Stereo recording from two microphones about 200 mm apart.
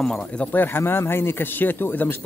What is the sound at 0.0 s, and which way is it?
Speech, 5° left (ahead or behind).